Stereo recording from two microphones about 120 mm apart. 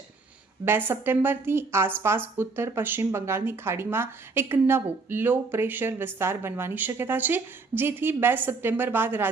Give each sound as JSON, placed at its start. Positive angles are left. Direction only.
{"t": 0.6, "sound": "a woman's voice", "side_deg": -20}